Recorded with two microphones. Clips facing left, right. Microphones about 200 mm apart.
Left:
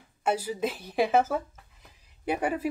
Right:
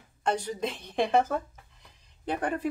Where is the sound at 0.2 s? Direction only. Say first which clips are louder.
Left 1 dB; 5° left (ahead or behind).